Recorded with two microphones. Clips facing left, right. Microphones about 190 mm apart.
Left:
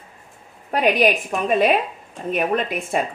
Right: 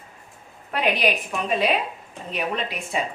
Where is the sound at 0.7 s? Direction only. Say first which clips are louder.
Left 5 dB; 45° left (ahead or behind).